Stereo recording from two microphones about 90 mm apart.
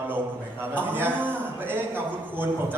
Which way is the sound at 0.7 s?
20° right (ahead or behind).